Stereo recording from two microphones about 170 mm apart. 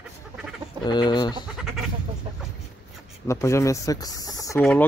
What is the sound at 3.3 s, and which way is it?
Speech, 15° left (ahead or behind).